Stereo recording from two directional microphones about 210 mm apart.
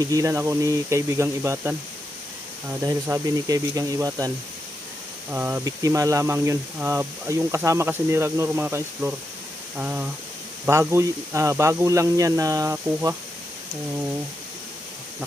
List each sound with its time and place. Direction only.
0.0 s speech: 15° right (ahead or behind)
5.3 s speech: 10° right (ahead or behind)